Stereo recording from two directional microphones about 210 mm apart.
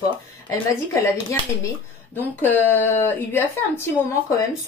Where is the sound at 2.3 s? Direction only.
10° left (ahead or behind).